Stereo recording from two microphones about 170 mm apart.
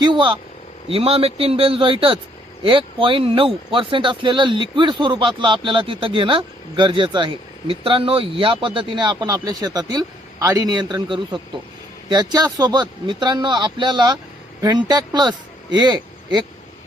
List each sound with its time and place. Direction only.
0.0 s speech: 30° right (ahead or behind)